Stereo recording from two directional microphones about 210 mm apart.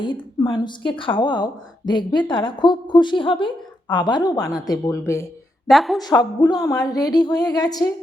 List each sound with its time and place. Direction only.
0.0 s a woman's voice: 20° left (ahead or behind)
5.6 s a woman's voice: centre (ahead or behind)
6.0 s a woman's voice: 20° left (ahead or behind)